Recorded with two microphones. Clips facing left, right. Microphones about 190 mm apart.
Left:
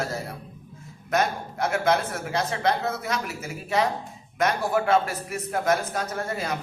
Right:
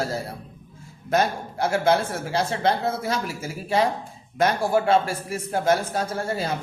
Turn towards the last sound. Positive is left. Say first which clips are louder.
# right 3 dB
turn(degrees=-30)  # may be behind; listen again after turning